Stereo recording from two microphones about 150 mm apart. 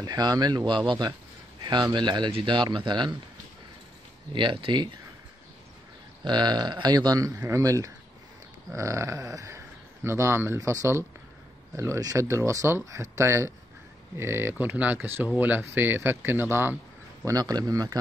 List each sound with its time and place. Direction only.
0.0 s speech: 25° right (ahead or behind)
4.3 s speech: 35° right (ahead or behind)
6.2 s speech: 30° right (ahead or behind)